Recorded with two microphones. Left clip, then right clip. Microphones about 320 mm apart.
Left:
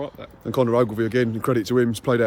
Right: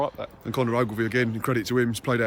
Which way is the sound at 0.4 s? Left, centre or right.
Centre.